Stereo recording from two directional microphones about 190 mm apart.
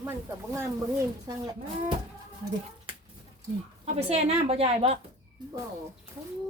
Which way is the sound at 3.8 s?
35° right (ahead or behind).